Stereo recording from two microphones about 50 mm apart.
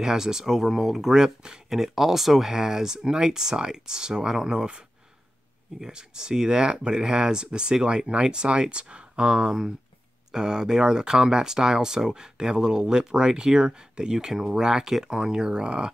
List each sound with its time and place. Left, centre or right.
0.0 s speech: centre